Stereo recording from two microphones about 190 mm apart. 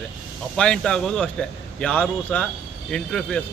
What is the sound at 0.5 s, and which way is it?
A man's voice, 5° left (ahead or behind).